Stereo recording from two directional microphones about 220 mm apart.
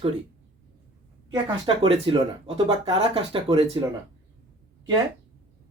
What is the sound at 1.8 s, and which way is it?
Speech, 25° right (ahead or behind).